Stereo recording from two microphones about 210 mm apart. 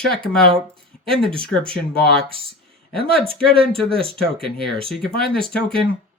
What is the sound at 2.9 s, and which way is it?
Speech, 25° right (ahead or behind).